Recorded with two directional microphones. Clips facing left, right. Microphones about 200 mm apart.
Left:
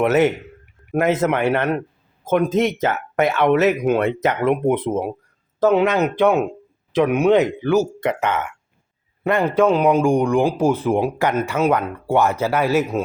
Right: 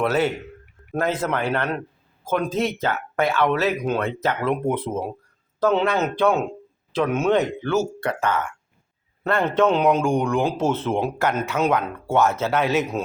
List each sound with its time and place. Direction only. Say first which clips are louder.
0.0 s speech: left 5 dB; 20° left (ahead or behind)